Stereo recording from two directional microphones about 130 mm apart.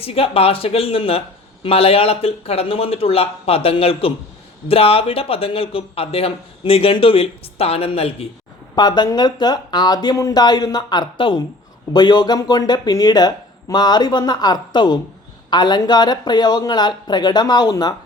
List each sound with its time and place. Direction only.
0.0 s speech: 45° left (ahead or behind)
8.7 s speech: 35° left (ahead or behind)